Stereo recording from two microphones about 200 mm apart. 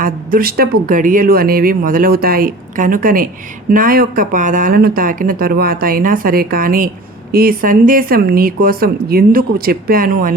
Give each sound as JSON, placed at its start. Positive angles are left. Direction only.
{"t": 0.0, "sound": "speech", "side_deg": -45}